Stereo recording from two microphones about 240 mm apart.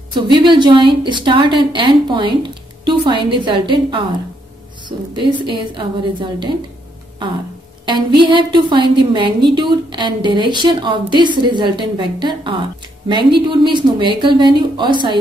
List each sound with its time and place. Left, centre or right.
0.1 s a woman's voice: centre
7.8 s a woman's voice: centre